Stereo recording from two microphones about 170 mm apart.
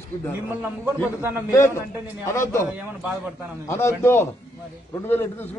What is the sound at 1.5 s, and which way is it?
A man's voice, 15° left (ahead or behind).